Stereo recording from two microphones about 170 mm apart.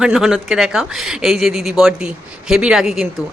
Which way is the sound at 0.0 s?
5° right (ahead or behind).